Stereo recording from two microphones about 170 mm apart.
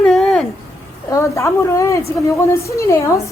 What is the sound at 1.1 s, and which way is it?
A woman's voice, 15° left (ahead or behind).